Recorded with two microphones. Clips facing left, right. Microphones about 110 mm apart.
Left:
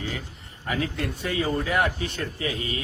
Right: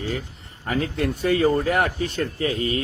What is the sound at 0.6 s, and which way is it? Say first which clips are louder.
A man's voice: right 4 dB; 40° right (ahead or behind).